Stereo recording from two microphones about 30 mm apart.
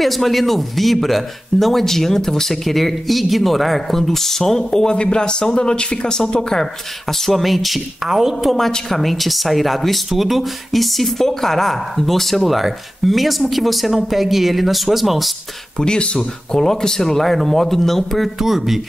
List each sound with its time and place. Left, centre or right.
0.0 s speech: centre
4.9 s a man's voice: left
6.5 s speech: centre
8.1 s speech: centre
8.4 s speech: centre
15.8 s speech: left
16.2 s speech: centre
18.4 s speech: centre